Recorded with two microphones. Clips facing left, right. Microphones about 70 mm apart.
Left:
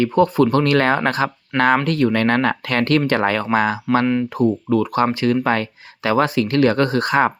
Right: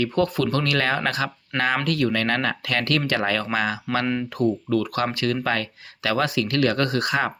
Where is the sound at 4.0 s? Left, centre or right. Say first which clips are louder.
Left 6 dB; centre.